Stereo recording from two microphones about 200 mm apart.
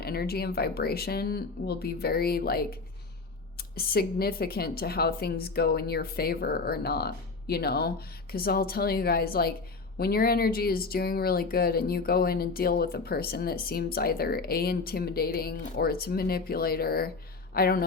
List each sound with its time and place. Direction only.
0.0 s speech: 50° left (ahead or behind)